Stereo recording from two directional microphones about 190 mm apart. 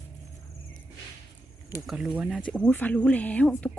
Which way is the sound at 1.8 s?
5° right (ahead or behind).